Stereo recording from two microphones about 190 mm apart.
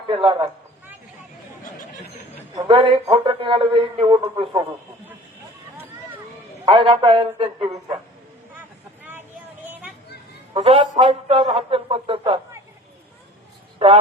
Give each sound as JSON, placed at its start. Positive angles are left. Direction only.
{"t": 0.1, "sound": "speech", "side_deg": -30}
{"t": 2.6, "sound": "speech", "side_deg": -25}
{"t": 6.7, "sound": "speech", "side_deg": -30}
{"t": 10.5, "sound": "speech", "side_deg": -30}
{"t": 13.7, "sound": "a man's voice", "side_deg": -30}